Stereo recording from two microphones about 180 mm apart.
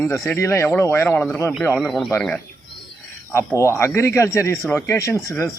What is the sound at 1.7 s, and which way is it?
Speech, centre (ahead or behind).